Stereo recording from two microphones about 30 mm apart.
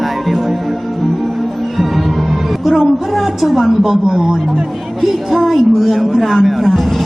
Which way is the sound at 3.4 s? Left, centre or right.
Centre.